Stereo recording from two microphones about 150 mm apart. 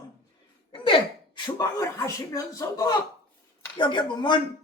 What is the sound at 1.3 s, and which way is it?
Speech, 25° left (ahead or behind).